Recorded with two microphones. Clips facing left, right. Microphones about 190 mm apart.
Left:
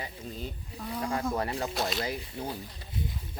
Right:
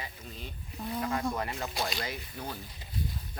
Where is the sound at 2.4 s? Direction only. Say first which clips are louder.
Left 2 dB; 25° left (ahead or behind).